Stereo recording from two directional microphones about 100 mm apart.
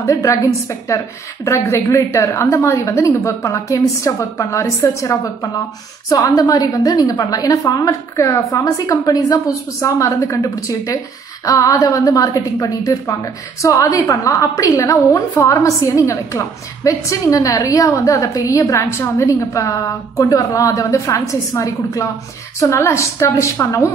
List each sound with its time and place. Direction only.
0.0 s a woman's voice: 35° left (ahead or behind)